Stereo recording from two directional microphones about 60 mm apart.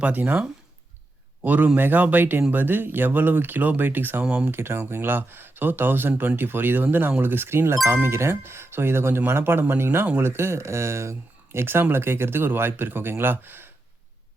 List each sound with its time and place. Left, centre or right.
0.0 s speech: right
4.2 s speech: right
4.5 s speech: right